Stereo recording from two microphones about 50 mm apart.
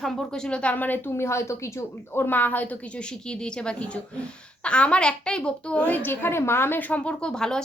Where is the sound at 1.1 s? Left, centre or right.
Left.